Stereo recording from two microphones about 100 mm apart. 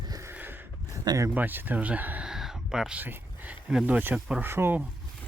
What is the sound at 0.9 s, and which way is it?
Speech, 35° right (ahead or behind).